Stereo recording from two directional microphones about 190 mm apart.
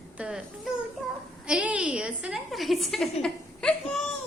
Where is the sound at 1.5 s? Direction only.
5° right (ahead or behind).